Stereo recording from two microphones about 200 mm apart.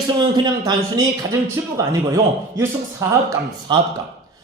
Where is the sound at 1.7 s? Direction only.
15° right (ahead or behind).